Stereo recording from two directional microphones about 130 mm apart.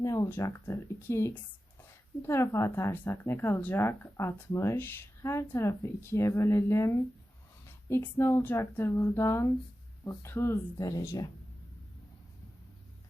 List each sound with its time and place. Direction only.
0.0 s a woman's voice: 25° left (ahead or behind)